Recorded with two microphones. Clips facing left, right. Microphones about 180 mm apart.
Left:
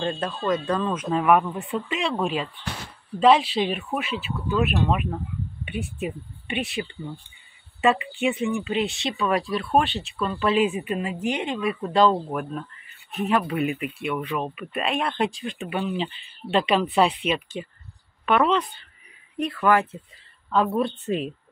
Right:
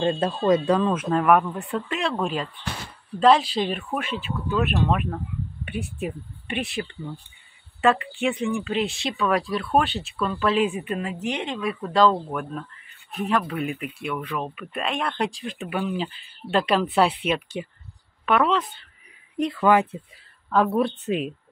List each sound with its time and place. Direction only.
0.2 s speech: 30° right (ahead or behind)
0.7 s speech: 10° right (ahead or behind)
7.8 s speech: centre (ahead or behind)
19.3 s speech: 15° right (ahead or behind)
20.4 s speech: 5° right (ahead or behind)